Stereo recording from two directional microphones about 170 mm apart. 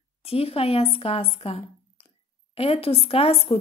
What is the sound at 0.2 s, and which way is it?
A woman's voice, 35° left (ahead or behind).